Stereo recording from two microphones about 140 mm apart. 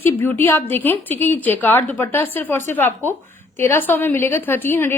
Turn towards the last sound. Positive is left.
turn(degrees=15)  # may be behind; listen again after turning